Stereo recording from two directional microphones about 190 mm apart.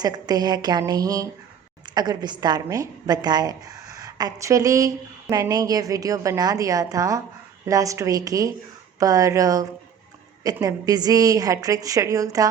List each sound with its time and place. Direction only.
0.0 s a woman's voice: 20° right (ahead or behind)